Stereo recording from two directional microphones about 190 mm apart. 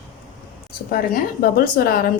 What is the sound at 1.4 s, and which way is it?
Speech, 50° left (ahead or behind).